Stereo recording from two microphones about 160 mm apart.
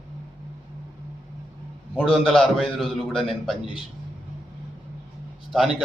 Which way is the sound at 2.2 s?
Centre (ahead or behind).